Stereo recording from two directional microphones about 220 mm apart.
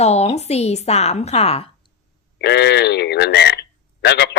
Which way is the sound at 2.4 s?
50° left (ahead or behind).